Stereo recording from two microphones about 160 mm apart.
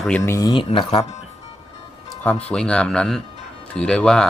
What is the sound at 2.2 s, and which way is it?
Speech, 10° left (ahead or behind).